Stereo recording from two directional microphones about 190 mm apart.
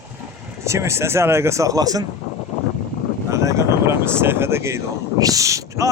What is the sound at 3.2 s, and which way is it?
Speech, 15° right (ahead or behind).